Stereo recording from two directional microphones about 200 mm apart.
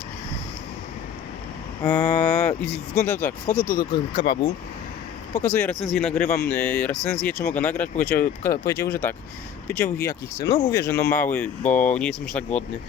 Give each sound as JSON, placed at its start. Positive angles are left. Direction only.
{"t": 1.8, "sound": "speech", "side_deg": 10}
{"t": 3.9, "sound": "speech", "side_deg": 25}
{"t": 5.3, "sound": "speech", "side_deg": 10}